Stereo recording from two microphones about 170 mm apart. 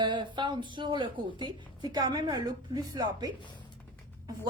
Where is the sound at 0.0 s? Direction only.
25° right (ahead or behind).